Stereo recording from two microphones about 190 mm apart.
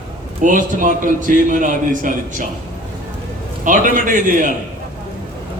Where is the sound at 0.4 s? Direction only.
45° right (ahead or behind).